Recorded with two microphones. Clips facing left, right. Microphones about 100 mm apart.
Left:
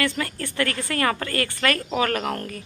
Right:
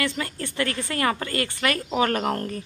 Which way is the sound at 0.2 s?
20° right (ahead or behind).